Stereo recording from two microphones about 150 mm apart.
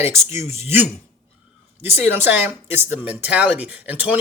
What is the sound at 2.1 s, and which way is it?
Speech, 15° right (ahead or behind).